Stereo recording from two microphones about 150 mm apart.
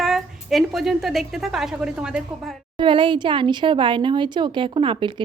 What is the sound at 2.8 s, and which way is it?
Speech, 35° right (ahead or behind).